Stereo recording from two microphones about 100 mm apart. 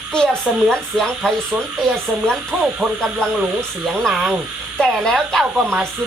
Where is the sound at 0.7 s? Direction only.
5° left (ahead or behind).